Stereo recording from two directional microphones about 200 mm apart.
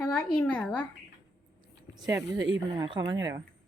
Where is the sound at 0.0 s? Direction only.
5° left (ahead or behind).